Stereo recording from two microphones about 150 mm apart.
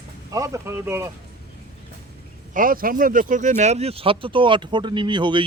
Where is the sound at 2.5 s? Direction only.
65° right (ahead or behind).